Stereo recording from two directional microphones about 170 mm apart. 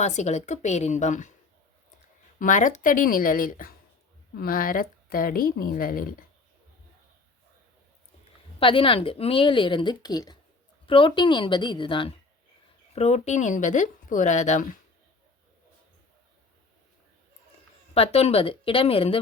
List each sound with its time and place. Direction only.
0.0 s speech: 40° left (ahead or behind)
2.4 s speech: 50° left (ahead or behind)
8.5 s a woman's voice: 30° left (ahead or behind)
17.9 s speech: 35° left (ahead or behind)